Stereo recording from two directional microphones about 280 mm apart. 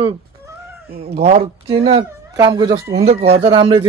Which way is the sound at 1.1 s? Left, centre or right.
Right.